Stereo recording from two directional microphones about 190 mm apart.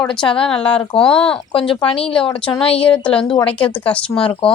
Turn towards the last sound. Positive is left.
turn(degrees=30)  # may be behind; listen again after turning